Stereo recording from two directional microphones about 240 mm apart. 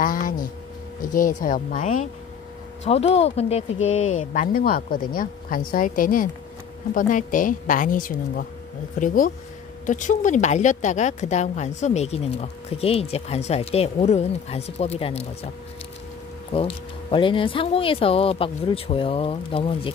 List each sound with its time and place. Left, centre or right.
0.0 s a woman's voice: left
4.0 s speech: left
4.3 s a woman's voice: left
16.5 s a woman's voice: left